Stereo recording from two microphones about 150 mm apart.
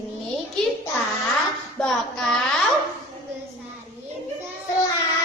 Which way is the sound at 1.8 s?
5° left (ahead or behind).